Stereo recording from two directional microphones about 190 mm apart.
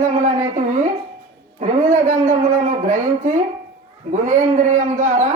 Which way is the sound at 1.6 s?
40° right (ahead or behind).